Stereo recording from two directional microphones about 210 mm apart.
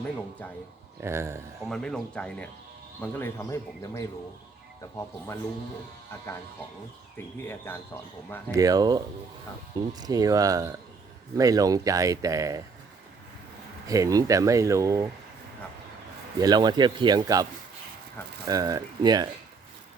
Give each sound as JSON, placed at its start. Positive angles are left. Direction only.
{"t": 1.0, "sound": "speech", "side_deg": -10}
{"t": 1.6, "sound": "speech", "side_deg": 5}
{"t": 7.4, "sound": "speech", "side_deg": 10}
{"t": 8.5, "sound": "speech", "side_deg": -15}
{"t": 13.8, "sound": "speech", "side_deg": -15}
{"t": 16.4, "sound": "speech", "side_deg": -20}
{"t": 18.4, "sound": "speech", "side_deg": -15}